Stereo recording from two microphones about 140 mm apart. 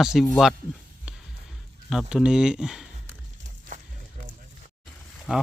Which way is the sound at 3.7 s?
65° right (ahead or behind).